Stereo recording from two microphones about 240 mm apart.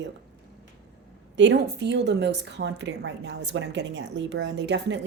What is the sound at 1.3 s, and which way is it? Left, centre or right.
A woman's voice, right.